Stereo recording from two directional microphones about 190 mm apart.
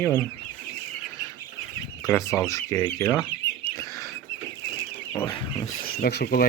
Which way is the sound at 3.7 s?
15° left (ahead or behind).